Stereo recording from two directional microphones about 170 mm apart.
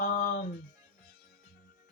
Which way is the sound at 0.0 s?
50° left (ahead or behind).